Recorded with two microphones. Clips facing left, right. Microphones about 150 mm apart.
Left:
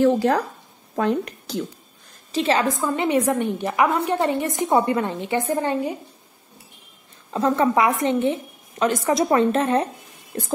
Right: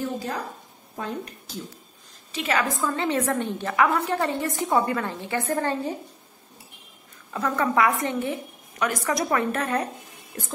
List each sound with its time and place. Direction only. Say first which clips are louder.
0.0 s a woman's voice: left 12 dB; 80° left
2.3 s a woman's voice: left 5 dB; 30° left (ahead or behind)
2.7 s a woman's voice: left 4 dB; 20° left (ahead or behind)
7.2 s a woman's voice: left 6 dB; 25° left (ahead or behind)